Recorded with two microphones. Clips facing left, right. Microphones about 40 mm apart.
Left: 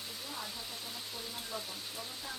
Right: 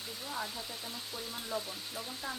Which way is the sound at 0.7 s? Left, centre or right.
Centre.